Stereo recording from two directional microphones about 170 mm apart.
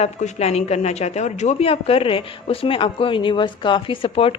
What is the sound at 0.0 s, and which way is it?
Speech, 40° left (ahead or behind).